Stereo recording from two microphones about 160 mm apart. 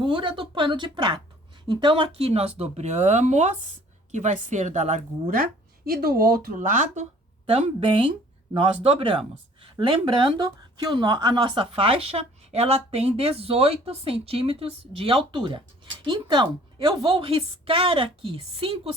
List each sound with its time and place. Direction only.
0.0 s a woman's voice: 30° right (ahead or behind); by 5.4 s 50° right (ahead or behind)
5.4 s speech: 70° right (ahead or behind); by 7.1 s 50° right (ahead or behind)
7.8 s speech: 35° right (ahead or behind)